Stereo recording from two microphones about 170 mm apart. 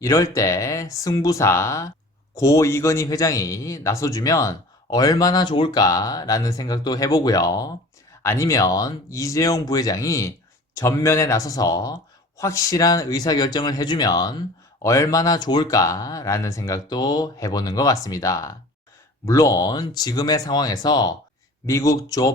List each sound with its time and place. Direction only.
0.0 s a man's voice: 20° left (ahead or behind)